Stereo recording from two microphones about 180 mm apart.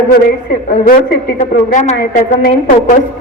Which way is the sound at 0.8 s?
50° left (ahead or behind).